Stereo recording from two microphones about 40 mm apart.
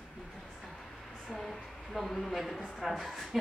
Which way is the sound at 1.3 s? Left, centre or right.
Centre.